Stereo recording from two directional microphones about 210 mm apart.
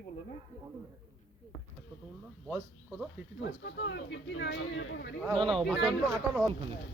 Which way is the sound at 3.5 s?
55° left (ahead or behind).